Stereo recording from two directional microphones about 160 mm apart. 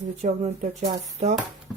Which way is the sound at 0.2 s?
45° right (ahead or behind).